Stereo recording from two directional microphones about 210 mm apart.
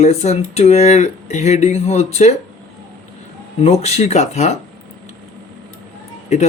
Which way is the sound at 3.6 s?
30° left (ahead or behind).